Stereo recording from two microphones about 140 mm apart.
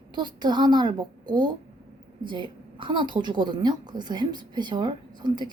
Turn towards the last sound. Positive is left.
turn(degrees=-30)  # may be behind; listen again after turning